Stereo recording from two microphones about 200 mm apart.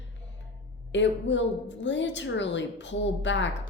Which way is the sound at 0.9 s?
65° left (ahead or behind).